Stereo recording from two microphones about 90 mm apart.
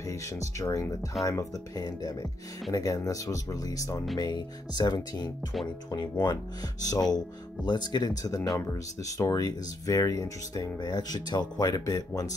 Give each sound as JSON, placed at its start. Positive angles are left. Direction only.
{"t": 0.1, "sound": "speech", "side_deg": 35}